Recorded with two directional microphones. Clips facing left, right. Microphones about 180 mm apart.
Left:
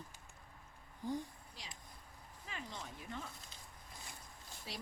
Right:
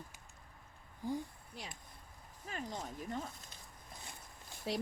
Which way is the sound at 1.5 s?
55° right (ahead or behind).